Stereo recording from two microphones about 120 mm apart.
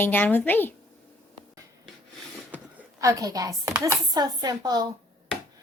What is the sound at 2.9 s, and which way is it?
A woman's voice, 30° right (ahead or behind).